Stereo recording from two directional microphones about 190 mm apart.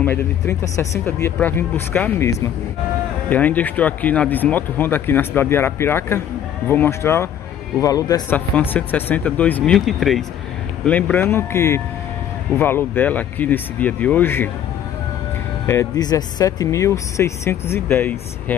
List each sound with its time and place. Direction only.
0.0 s speech: 10° left (ahead or behind)
15.6 s speech: 15° left (ahead or behind)